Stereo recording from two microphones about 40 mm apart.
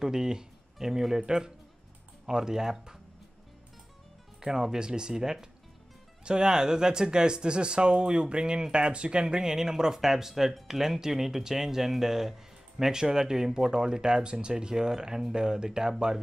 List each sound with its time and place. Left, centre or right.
0.0 s speech: centre
4.4 s speech: centre